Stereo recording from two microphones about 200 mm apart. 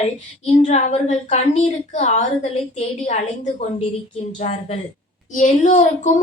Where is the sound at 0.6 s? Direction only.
35° left (ahead or behind).